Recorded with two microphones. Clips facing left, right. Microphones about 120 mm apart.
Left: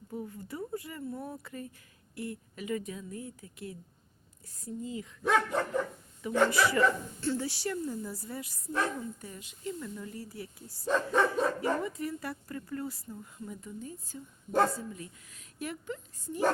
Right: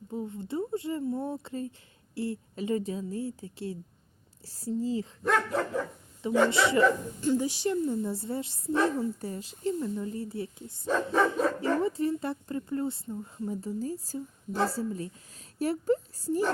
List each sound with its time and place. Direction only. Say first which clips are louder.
0.1 s a woman's voice: right 6 dB; 25° right (ahead or behind)
5.2 s speech: even; centre (ahead or behind)
6.5 s a woman's voice: right 3 dB; 25° right (ahead or behind)
10.8 s speech: right 2 dB; centre (ahead or behind)
11.8 s a woman's voice: right 7 dB; 30° right (ahead or behind)